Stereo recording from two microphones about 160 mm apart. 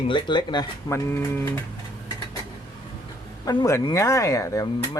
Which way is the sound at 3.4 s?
20° left (ahead or behind).